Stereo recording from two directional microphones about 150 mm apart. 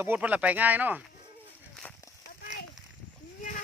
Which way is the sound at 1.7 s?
5° left (ahead or behind).